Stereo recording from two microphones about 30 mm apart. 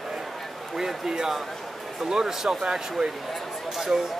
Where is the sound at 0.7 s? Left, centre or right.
Centre.